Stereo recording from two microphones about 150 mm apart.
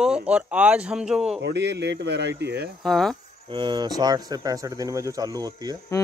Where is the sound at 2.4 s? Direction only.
90° right.